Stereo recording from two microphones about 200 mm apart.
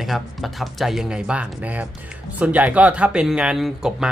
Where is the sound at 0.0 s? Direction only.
Centre (ahead or behind).